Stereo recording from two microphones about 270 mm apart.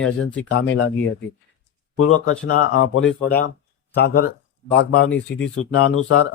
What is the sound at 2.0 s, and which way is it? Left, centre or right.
Speech, left.